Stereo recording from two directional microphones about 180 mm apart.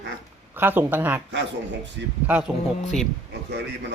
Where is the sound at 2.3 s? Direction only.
5° right (ahead or behind).